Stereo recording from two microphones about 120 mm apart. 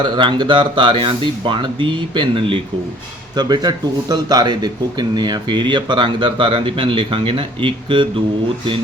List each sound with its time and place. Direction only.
0.0 s speech: 40° right (ahead or behind)
3.3 s speech: 35° right (ahead or behind)